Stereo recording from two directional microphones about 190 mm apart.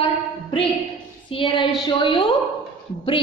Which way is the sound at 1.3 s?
25° left (ahead or behind).